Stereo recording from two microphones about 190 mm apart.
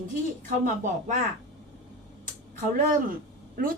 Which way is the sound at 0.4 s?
40° right (ahead or behind).